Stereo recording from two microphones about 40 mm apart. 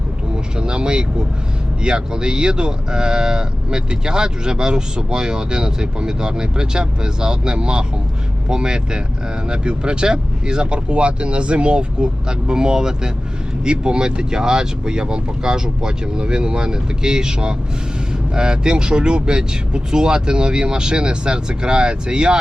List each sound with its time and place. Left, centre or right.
0.5 s speech: right